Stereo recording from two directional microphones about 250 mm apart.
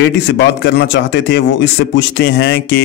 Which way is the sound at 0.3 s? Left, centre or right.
Left.